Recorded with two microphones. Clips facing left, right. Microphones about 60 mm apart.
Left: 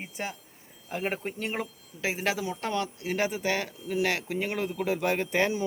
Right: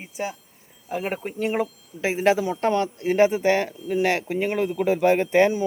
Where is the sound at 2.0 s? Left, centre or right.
Right.